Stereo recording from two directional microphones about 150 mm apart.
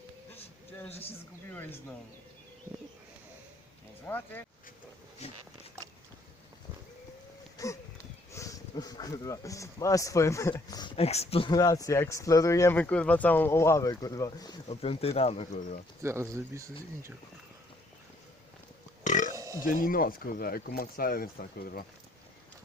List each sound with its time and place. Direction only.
0.9 s speech: 40° left (ahead or behind)
1.5 s speech: 10° left (ahead or behind)
4.0 s speech: 15° left (ahead or behind)
5.2 s speech: 45° left (ahead or behind)
7.6 s speech: 25° left (ahead or behind)
10.9 s speech: 45° left (ahead or behind)
11.5 s speech: 25° left (ahead or behind)
12.8 s speech: 10° left (ahead or behind); by 14.6 s 25° left (ahead or behind)
14.7 s speech: 40° left (ahead or behind)
16.0 s speech: 15° right (ahead or behind)
19.0 s burping: 55° left (ahead or behind)
19.3 s burping: 20° right (ahead or behind)
19.6 s speech: 70° left (ahead or behind)